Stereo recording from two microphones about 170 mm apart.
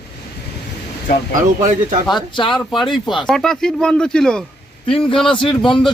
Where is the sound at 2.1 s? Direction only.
25° left (ahead or behind).